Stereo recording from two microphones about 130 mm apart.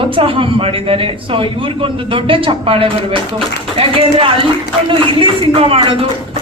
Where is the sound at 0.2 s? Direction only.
45° right (ahead or behind).